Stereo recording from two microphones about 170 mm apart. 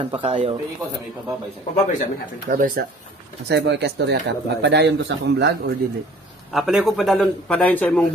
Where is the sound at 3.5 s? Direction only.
85° right.